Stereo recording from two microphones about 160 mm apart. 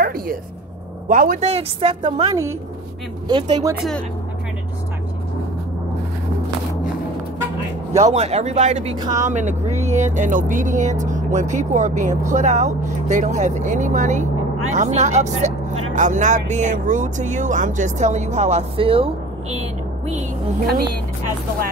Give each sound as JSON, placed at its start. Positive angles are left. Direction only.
{"t": 0.0, "sound": "a sound", "side_deg": -65}
{"t": 1.0, "sound": "speech", "side_deg": -55}
{"t": 1.5, "sound": "a woman's voice", "side_deg": -35}
{"t": 7.9, "sound": "speech", "side_deg": -45}
{"t": 8.9, "sound": "a woman's voice", "side_deg": -25}
{"t": 9.2, "sound": "speech", "side_deg": -50}